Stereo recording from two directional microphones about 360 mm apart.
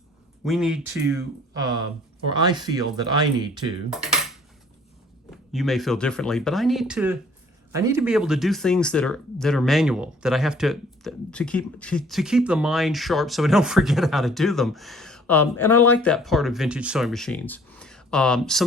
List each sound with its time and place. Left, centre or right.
0.4 s speech: centre
3.9 s dishes: centre
5.3 s speech: centre